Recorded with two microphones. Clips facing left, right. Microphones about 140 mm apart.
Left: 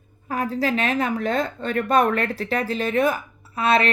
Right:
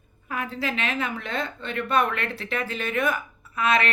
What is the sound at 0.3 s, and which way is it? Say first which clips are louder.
A woman's voice: left 6 dB; 40° left (ahead or behind).